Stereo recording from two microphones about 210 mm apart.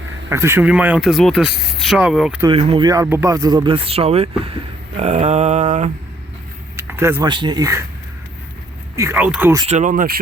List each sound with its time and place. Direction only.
0.3 s speech: 15° right (ahead or behind)
2.4 s speech: 25° right (ahead or behind)
6.7 s speech: 10° right (ahead or behind)
9.0 s speech: 10° right (ahead or behind)
9.6 s speech: 30° right (ahead or behind)